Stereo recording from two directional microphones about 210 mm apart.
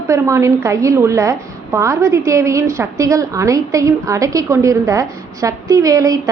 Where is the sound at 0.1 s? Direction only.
15° right (ahead or behind).